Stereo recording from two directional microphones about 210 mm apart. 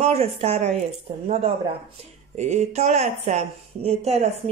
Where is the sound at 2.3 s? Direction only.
35° right (ahead or behind).